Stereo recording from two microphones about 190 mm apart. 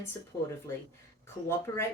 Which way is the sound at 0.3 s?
15° left (ahead or behind).